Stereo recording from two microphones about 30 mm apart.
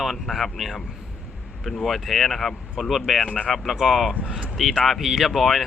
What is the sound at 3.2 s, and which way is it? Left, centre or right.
Speech, left.